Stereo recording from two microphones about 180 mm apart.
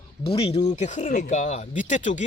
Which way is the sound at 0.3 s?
30° left (ahead or behind).